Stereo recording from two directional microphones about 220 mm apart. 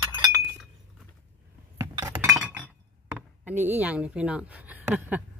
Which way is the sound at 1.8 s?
15° right (ahead or behind).